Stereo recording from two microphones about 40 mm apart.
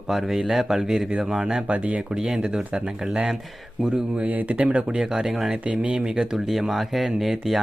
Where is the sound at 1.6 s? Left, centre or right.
Right.